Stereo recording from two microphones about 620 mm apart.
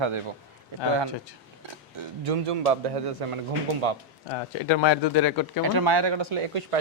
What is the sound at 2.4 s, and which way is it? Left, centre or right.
Speech, right.